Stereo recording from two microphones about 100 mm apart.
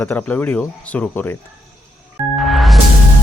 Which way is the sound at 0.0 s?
20° left (ahead or behind).